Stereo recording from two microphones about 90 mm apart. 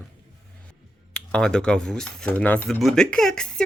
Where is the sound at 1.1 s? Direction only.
5° left (ahead or behind).